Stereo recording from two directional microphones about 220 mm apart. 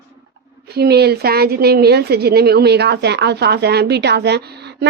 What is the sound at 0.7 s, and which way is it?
A woman's voice, 45° right (ahead or behind).